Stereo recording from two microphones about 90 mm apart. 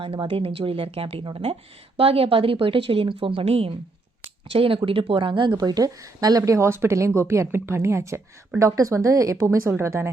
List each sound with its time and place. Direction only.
0.0 s speech: 80° right
5.5 s speech: 45° right (ahead or behind); by 10.1 s 30° right (ahead or behind)